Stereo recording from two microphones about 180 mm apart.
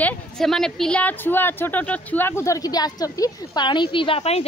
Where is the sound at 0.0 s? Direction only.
Centre (ahead or behind).